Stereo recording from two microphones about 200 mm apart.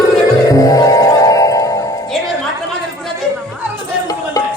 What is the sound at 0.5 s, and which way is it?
Music, 15° left (ahead or behind).